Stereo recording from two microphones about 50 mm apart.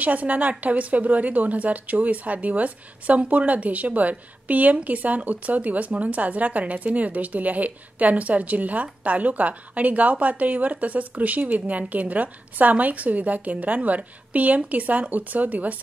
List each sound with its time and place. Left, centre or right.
0.0 s a woman's voice: right